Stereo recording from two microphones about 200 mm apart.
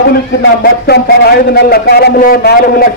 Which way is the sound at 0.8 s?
50° left (ahead or behind).